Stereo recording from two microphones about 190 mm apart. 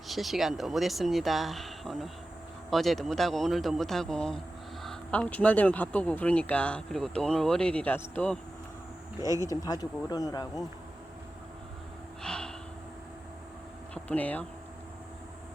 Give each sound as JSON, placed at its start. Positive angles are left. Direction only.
{"t": 0.1, "sound": "speech", "side_deg": 0}
{"t": 9.2, "sound": "speech", "side_deg": -15}
{"t": 9.5, "sound": "speech", "side_deg": 20}
{"t": 12.2, "sound": "snort", "side_deg": 5}
{"t": 13.9, "sound": "speech", "side_deg": 10}